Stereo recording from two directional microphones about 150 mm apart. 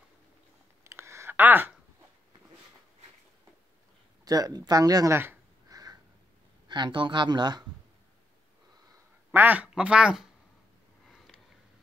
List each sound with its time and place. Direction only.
0.8 s a sound: 20° right (ahead or behind)
4.2 s speech: 25° right (ahead or behind)
6.7 s speech: 30° right (ahead or behind)
9.3 s speech: 10° right (ahead or behind)